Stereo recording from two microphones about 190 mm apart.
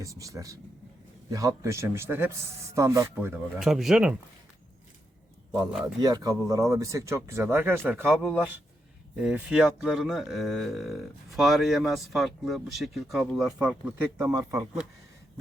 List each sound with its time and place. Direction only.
0.0 s speech: 15° right (ahead or behind)
3.6 s speech: centre (ahead or behind)
6.0 s speech: 20° right (ahead or behind)